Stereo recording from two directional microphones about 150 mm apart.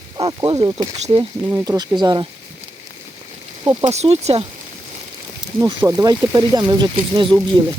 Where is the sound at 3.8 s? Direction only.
45° right (ahead or behind).